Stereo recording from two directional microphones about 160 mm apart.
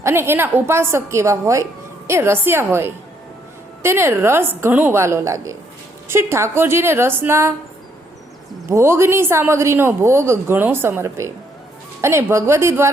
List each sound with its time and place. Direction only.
0.0 s speech: 15° right (ahead or behind)
8.7 s speech: 15° right (ahead or behind)